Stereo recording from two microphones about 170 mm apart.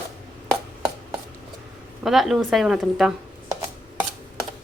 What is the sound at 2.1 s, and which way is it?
A woman's voice, centre (ahead or behind).